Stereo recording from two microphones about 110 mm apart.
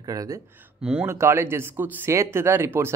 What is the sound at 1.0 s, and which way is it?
Speech, 25° right (ahead or behind).